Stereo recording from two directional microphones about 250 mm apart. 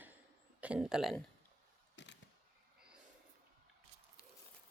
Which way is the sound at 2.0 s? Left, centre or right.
Left.